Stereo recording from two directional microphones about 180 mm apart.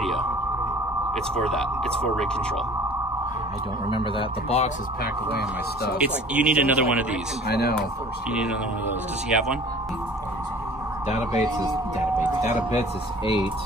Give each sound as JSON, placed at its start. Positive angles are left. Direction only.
{"t": 1.3, "sound": "speech", "side_deg": 5}
{"t": 3.9, "sound": "a man's voice", "side_deg": 30}
{"t": 5.9, "sound": "speech", "side_deg": -5}
{"t": 7.4, "sound": "speech", "side_deg": 65}
{"t": 11.1, "sound": "speech", "side_deg": 40}